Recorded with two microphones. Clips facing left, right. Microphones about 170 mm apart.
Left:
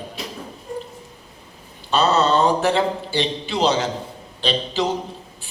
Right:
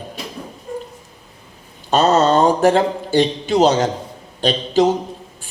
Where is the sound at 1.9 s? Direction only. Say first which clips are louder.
Right 4 dB; 45° right (ahead or behind).